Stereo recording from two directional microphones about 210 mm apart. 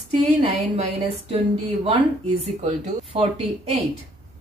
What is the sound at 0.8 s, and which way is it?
A woman's voice, 30° right (ahead or behind).